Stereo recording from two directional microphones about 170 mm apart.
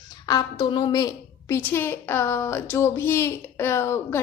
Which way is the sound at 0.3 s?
25° left (ahead or behind).